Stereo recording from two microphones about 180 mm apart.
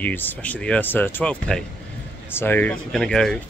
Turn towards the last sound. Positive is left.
turn(degrees=5)  # may be behind; listen again after turning